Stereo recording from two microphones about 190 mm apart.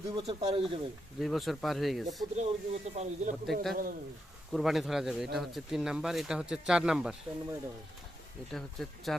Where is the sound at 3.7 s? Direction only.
50° right (ahead or behind).